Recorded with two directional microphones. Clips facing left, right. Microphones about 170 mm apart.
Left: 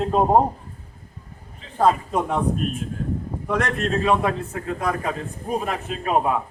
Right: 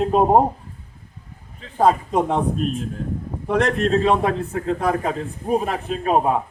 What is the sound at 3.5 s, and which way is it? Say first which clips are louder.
A man's voice: right 5 dB; 35° right (ahead or behind).